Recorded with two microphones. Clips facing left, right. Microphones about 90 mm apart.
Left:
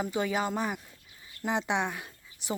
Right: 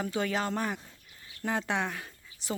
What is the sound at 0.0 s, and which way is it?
Speech, 15° left (ahead or behind).